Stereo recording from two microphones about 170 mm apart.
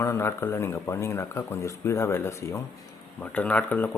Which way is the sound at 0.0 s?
15° left (ahead or behind).